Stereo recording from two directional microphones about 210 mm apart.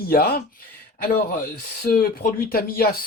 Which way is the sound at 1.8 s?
45° left (ahead or behind).